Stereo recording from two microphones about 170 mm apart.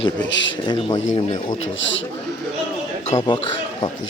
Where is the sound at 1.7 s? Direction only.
90° left.